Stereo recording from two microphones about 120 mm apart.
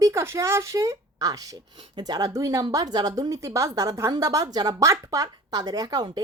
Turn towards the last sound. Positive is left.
turn(degrees=-35)  # may be behind; listen again after turning